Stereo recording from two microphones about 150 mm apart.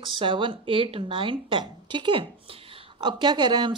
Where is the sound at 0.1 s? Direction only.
35° right (ahead or behind).